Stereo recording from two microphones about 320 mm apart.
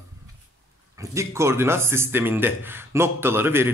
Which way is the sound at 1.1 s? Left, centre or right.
Centre.